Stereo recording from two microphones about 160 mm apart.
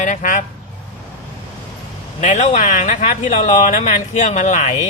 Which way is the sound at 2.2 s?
50° left (ahead or behind).